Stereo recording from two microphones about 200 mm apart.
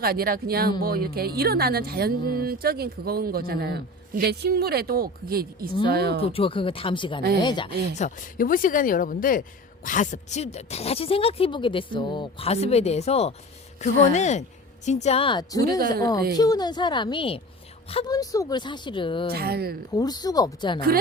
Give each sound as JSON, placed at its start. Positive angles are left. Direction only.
{"t": 0.0, "sound": "a woman's voice", "side_deg": -50}
{"t": 6.2, "sound": "speech", "side_deg": 30}
{"t": 7.9, "sound": "speech", "side_deg": 40}
{"t": 19.3, "sound": "a woman's voice", "side_deg": -50}
{"t": 19.9, "sound": "speech", "side_deg": 20}